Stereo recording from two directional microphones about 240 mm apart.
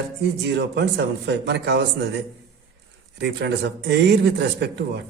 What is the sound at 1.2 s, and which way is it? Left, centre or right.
Speech, right.